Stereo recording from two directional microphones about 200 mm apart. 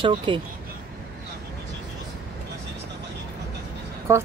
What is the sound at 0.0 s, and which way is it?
Speech, 25° right (ahead or behind).